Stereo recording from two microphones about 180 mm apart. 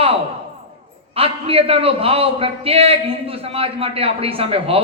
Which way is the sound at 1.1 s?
30° right (ahead or behind).